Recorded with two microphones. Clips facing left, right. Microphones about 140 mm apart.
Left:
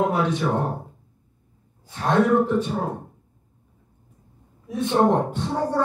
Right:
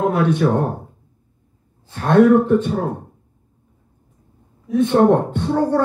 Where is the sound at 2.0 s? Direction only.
60° right (ahead or behind).